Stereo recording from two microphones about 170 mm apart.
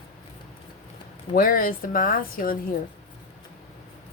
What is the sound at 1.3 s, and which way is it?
Speech, 55° left (ahead or behind).